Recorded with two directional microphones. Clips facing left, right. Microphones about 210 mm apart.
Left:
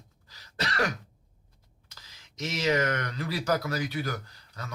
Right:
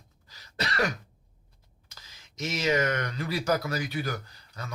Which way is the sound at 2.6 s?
20° right (ahead or behind).